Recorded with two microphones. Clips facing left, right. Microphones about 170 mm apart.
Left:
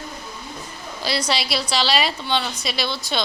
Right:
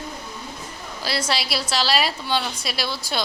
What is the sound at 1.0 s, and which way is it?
A woman's voice, centre (ahead or behind).